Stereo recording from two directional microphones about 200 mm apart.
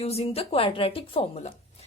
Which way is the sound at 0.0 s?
30° left (ahead or behind).